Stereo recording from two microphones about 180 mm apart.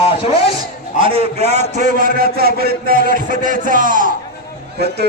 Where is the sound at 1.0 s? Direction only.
30° right (ahead or behind).